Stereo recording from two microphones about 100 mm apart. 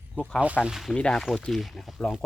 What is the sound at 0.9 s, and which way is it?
Speech, 10° left (ahead or behind).